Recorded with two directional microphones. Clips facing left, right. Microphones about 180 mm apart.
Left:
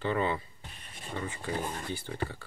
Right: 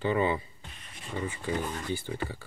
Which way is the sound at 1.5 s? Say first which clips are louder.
Right 1 dB; 35° left (ahead or behind).